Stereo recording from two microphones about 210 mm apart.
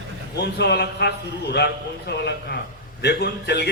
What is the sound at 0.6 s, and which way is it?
A man's voice, 50° left (ahead or behind).